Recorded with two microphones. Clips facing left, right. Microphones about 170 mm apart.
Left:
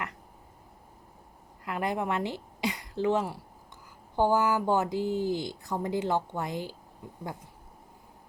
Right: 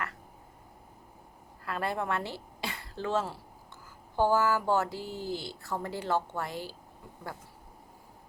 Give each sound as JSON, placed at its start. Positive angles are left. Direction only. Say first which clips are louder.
{"t": 1.6, "sound": "a woman's voice", "louder": "left 2 dB", "side_deg": 15}